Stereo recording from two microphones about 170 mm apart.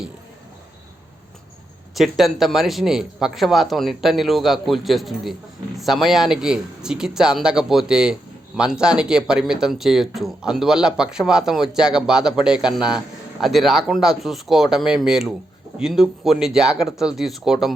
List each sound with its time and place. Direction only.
2.0 s speech: centre (ahead or behind)